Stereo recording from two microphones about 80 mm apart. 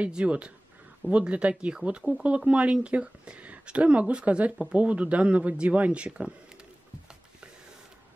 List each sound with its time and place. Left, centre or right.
0.0 s speech: centre